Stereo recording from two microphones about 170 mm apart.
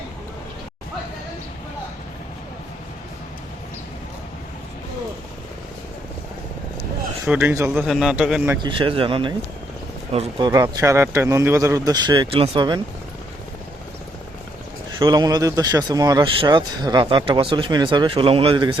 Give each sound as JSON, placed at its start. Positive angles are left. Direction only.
{"t": 7.3, "sound": "a man's voice", "side_deg": -5}
{"t": 7.9, "sound": "a man's voice", "side_deg": -5}
{"t": 8.6, "sound": "speech", "side_deg": -30}
{"t": 14.9, "sound": "speech", "side_deg": -25}